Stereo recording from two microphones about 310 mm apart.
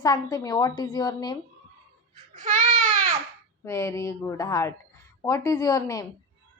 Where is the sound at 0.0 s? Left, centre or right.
Centre.